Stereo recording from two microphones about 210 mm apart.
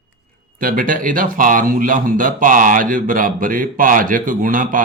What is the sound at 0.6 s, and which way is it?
Speech, 40° right (ahead or behind).